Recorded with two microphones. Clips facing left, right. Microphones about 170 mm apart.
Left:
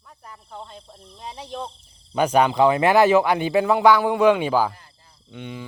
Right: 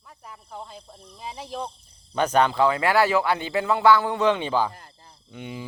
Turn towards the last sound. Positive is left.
turn(degrees=-10)  # may be behind; listen again after turning